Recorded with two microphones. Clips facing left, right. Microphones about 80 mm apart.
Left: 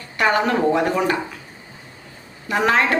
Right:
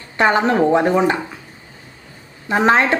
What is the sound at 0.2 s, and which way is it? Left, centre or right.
Speech, right.